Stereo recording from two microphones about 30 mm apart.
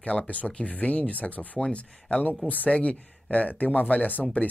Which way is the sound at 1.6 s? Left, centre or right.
Left.